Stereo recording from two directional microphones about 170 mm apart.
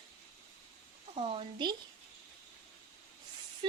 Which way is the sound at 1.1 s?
35° right (ahead or behind).